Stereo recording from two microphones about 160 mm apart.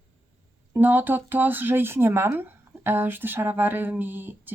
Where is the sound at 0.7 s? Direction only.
10° right (ahead or behind).